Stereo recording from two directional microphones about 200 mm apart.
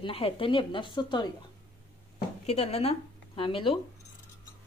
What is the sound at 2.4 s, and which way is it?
Speech, 30° left (ahead or behind).